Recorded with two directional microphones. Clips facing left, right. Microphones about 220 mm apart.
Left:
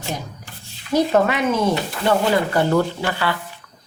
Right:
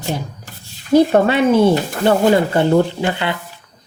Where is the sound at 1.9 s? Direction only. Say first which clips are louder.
Right 5 dB; 45° right (ahead or behind).